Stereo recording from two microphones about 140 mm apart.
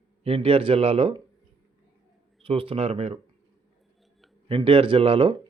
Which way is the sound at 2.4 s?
40° right (ahead or behind).